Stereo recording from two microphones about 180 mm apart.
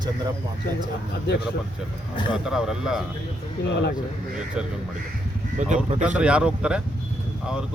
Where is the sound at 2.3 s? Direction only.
5° right (ahead or behind).